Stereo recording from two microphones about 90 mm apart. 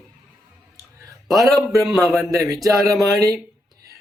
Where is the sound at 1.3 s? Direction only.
Centre (ahead or behind).